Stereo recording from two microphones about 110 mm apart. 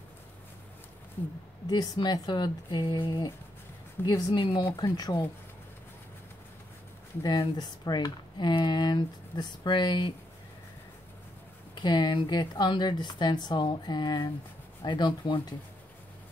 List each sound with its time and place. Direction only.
1.7 s speech: 40° left (ahead or behind)
4.7 s speech: 35° left (ahead or behind)
7.2 s speech: 40° left (ahead or behind)
11.7 s speech: 40° left (ahead or behind)